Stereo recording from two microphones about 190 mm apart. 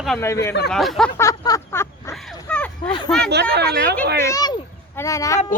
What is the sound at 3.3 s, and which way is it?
Speech, 60° right (ahead or behind).